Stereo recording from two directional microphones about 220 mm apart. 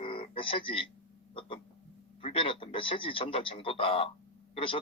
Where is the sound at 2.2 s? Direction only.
25° left (ahead or behind).